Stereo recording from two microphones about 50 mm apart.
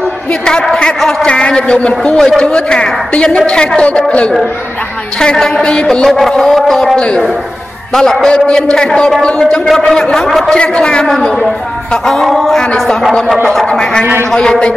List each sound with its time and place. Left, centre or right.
0.3 s a sound: centre
2.1 s a woman's voice: centre
6.0 s speech: centre
7.9 s a woman's voice: centre
9.7 s a man's voice: centre
10.5 s a woman's voice: centre
12.1 s speech: centre
13.7 s speech: centre